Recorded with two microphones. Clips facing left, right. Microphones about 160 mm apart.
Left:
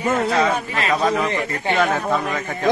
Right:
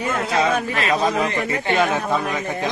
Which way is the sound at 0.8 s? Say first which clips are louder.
Left 2 dB; 25° right (ahead or behind).